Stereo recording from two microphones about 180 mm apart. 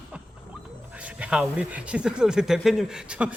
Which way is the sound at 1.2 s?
5° right (ahead or behind).